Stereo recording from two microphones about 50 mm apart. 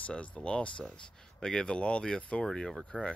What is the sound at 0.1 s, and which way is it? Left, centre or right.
Speech, left.